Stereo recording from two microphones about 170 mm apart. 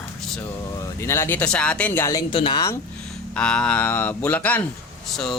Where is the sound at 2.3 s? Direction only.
30° left (ahead or behind).